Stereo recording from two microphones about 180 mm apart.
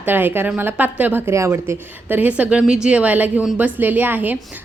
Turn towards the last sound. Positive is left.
turn(degrees=-10)  # may be behind; listen again after turning